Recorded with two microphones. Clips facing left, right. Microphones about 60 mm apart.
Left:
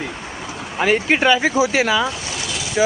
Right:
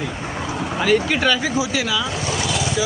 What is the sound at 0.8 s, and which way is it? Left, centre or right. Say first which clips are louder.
Speech: left 2 dB; left.